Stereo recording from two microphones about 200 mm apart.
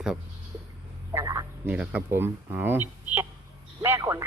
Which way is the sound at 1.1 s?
15° right (ahead or behind).